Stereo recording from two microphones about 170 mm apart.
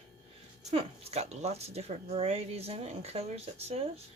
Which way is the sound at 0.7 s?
35° right (ahead or behind).